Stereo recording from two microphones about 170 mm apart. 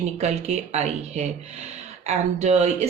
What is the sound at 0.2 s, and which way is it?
Speech, 40° right (ahead or behind).